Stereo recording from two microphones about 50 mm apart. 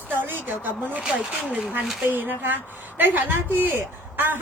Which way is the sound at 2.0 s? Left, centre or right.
Right.